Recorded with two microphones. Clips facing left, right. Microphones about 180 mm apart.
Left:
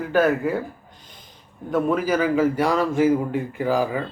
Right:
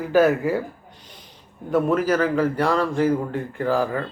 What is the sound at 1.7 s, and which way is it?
A man's voice, centre (ahead or behind).